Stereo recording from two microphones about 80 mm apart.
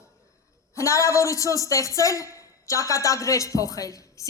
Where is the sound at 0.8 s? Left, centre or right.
Left.